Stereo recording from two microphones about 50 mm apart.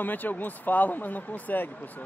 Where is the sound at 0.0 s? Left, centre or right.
Left.